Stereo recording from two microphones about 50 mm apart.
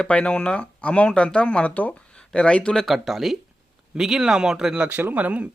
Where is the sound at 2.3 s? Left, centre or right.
Centre.